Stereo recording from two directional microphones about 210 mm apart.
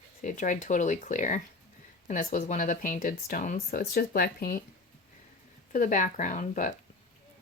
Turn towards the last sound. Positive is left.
turn(degrees=35)  # may be behind; listen again after turning